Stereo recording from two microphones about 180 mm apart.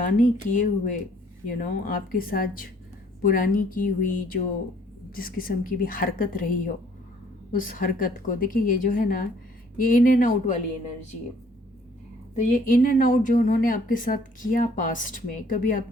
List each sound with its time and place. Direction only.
0.0 s speech: 50° left (ahead or behind)
5.1 s speech: 55° left (ahead or behind)
7.7 s speech: 50° left (ahead or behind)
12.4 s speech: 45° left (ahead or behind)